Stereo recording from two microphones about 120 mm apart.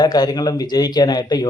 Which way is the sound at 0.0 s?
35° left (ahead or behind).